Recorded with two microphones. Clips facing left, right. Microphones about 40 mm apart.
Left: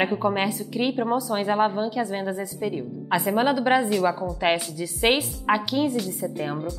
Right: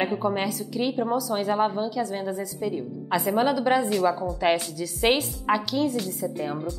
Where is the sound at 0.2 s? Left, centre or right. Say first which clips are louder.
Left 2 dB; left.